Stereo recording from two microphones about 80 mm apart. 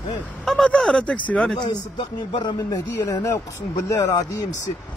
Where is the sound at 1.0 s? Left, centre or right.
Centre.